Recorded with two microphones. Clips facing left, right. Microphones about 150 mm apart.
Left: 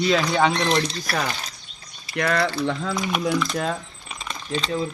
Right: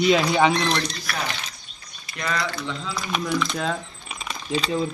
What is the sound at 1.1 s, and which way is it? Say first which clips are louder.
Speech: left 3 dB; 35° left (ahead or behind).